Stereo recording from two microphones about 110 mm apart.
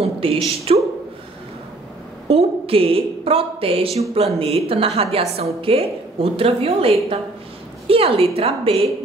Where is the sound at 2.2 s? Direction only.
60° right (ahead or behind).